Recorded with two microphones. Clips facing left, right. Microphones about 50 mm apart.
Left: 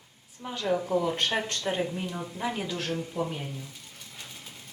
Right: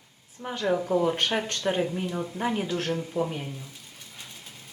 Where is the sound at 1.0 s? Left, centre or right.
Right.